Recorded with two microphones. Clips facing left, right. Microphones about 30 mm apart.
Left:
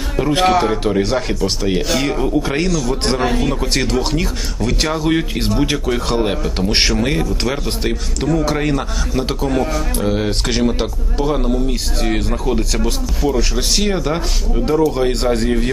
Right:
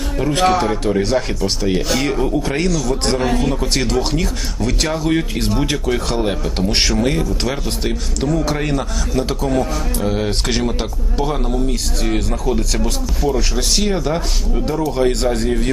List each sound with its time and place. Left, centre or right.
0.2 s speech: centre